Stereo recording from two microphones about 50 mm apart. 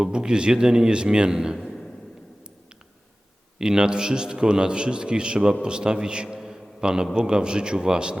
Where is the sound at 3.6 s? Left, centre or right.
Centre.